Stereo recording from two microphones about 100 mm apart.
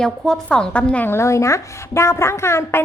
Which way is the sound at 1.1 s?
30° left (ahead or behind).